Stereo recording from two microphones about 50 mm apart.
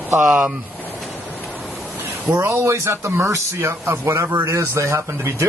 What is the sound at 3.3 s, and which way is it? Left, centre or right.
Speech, right.